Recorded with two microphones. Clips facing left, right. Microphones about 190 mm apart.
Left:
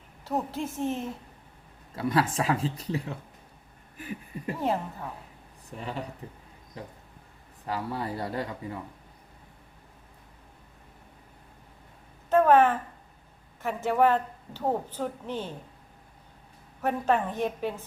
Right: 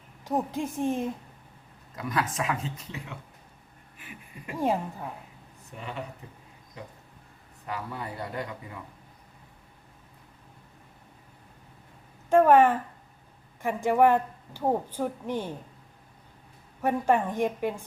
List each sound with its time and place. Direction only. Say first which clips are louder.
0.3 s a woman's voice: right 2 dB; 15° right (ahead or behind)
2.0 s speech: left 4 dB; 30° left (ahead or behind)
3.9 s a sound: left 9 dB; 40° left (ahead or behind)
4.5 s a woman's voice: right 3 dB; 10° right (ahead or behind)
5.8 s speech: left 2 dB; 35° left (ahead or behind)
7.7 s speech: left 4 dB; 35° left (ahead or behind)
12.3 s a woman's voice: right 1 dB; 10° right (ahead or behind)
16.8 s a woman's voice: right 2 dB; 10° right (ahead or behind)